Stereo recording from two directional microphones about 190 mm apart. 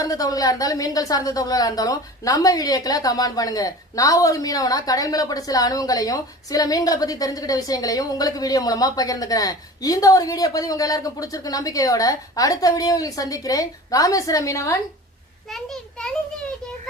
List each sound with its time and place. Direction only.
0.0 s a woman's voice: 20° left (ahead or behind)
15.4 s a child's voice: centre (ahead or behind)